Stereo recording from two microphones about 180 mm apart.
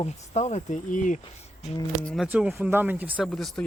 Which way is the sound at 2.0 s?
Centre (ahead or behind).